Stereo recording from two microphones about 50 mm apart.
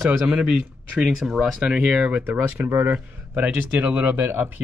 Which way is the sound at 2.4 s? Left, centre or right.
Right.